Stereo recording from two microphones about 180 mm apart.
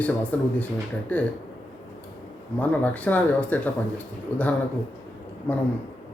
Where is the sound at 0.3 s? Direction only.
5° left (ahead or behind).